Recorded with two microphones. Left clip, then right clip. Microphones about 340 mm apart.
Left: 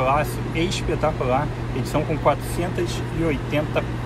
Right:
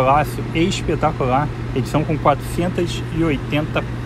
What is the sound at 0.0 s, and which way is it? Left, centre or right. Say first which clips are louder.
Speech: right 5 dB; right.